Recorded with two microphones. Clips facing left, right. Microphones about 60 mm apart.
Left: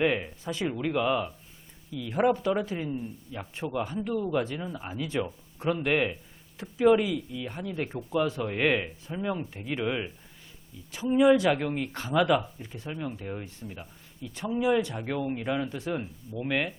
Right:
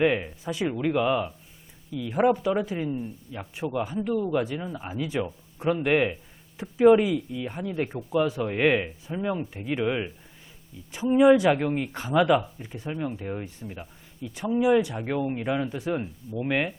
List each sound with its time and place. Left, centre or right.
0.0 s a man's voice: centre
11.1 s speech: centre
15.8 s speech: right